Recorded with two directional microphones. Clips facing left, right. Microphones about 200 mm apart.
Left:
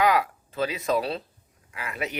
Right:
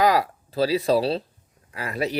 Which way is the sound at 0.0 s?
35° right (ahead or behind).